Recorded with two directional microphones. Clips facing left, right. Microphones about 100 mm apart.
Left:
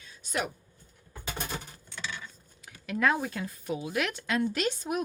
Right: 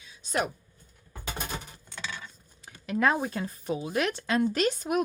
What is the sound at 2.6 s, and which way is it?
Speech, 30° right (ahead or behind).